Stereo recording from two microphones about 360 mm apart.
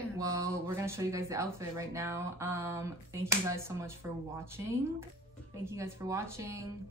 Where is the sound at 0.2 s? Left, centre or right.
Centre.